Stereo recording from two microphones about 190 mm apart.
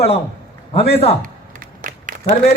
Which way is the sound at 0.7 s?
30° left (ahead or behind).